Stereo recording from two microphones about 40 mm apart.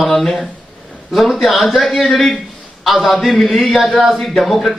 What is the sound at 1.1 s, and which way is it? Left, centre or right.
A man's voice, centre.